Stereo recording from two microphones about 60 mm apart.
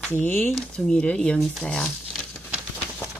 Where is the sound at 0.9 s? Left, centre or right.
Centre.